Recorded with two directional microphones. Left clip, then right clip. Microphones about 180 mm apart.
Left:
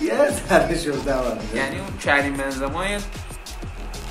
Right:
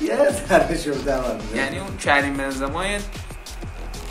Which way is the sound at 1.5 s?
20° right (ahead or behind).